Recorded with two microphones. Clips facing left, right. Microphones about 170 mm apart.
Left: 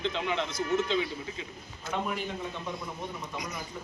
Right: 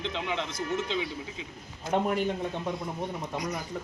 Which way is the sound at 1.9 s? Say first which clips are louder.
Right 6 dB; 50° right (ahead or behind).